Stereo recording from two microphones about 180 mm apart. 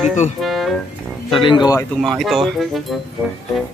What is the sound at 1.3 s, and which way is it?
Speech, 25° left (ahead or behind).